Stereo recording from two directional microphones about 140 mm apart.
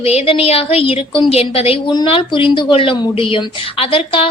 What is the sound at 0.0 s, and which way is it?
A woman's voice, 45° left (ahead or behind).